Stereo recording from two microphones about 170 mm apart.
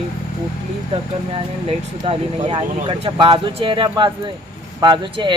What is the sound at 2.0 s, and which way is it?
Speech, 30° right (ahead or behind).